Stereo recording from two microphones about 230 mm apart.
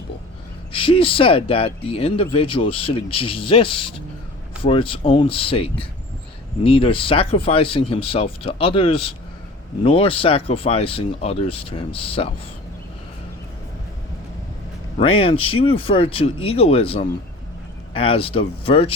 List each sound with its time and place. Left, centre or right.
0.7 s speech: left
14.9 s speech: left